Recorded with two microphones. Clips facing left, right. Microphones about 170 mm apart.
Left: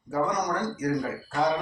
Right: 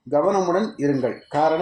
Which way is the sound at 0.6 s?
55° right (ahead or behind).